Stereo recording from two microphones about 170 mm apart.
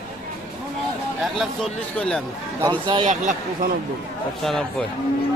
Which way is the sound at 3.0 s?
45° right (ahead or behind).